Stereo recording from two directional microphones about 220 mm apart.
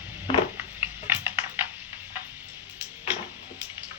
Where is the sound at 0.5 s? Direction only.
10° right (ahead or behind).